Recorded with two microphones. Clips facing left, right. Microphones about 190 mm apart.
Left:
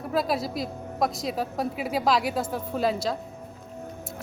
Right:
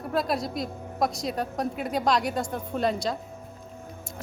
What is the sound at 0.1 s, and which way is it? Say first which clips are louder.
Speech: left 1 dB; centre (ahead or behind).